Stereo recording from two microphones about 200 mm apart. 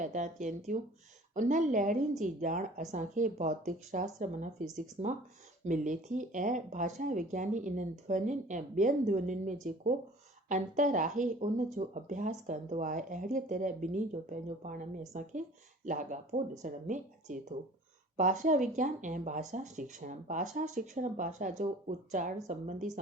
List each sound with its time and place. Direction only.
0.0 s speech: 40° right (ahead or behind)